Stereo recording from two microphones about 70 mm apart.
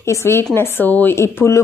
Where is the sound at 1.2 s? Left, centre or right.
Left.